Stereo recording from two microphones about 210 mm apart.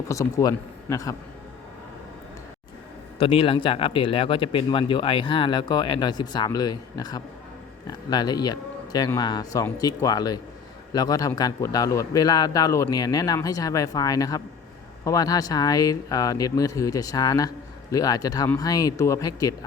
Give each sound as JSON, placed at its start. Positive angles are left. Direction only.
{"t": 0.1, "sound": "speech", "side_deg": 15}
{"t": 3.2, "sound": "speech", "side_deg": 25}